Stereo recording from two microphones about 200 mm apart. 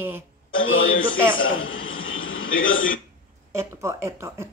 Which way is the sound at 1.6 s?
80° left.